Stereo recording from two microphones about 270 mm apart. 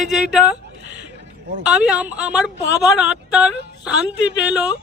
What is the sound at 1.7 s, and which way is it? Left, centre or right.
Speech, centre.